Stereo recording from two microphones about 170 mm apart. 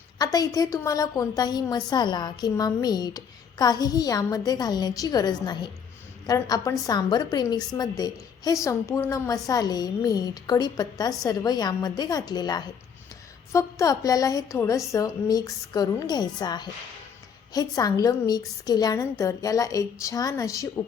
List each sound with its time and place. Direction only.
0.2 s a woman's voice: 20° left (ahead or behind)